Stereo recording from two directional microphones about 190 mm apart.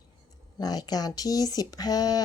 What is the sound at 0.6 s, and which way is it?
Speech, 20° left (ahead or behind).